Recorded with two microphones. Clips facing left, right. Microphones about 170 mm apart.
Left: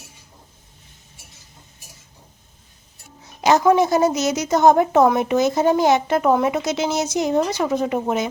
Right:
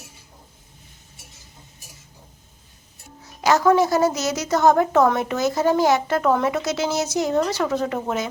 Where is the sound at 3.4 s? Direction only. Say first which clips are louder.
Left 2 dB; 20° left (ahead or behind).